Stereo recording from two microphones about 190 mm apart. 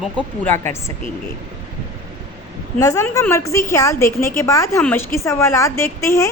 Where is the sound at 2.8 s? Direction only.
15° left (ahead or behind).